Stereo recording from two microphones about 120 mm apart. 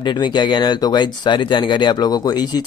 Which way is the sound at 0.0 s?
40° left (ahead or behind).